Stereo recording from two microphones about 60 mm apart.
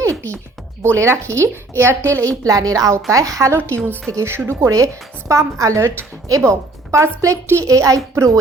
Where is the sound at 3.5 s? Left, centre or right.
Right.